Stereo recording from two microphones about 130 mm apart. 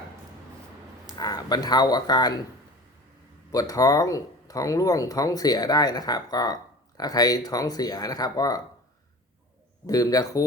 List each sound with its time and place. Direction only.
1.2 s speech: 30° left (ahead or behind)
3.5 s speech: 30° left (ahead or behind)
9.8 s speech: 30° left (ahead or behind)